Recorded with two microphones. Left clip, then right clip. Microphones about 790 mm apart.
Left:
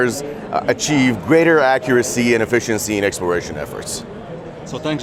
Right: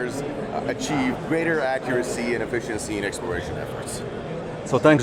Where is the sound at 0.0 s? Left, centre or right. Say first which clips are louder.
Left 8 dB; left.